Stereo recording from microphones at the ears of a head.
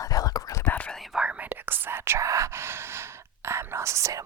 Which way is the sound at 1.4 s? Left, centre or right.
Right.